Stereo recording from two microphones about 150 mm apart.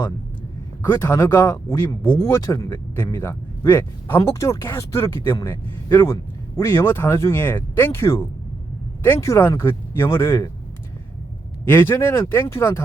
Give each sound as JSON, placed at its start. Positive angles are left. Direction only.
{"t": 0.9, "sound": "speech", "side_deg": 15}
{"t": 11.6, "sound": "speech", "side_deg": 15}